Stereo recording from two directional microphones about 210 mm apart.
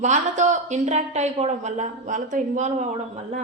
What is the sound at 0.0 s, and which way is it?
A woman's voice, 35° right (ahead or behind).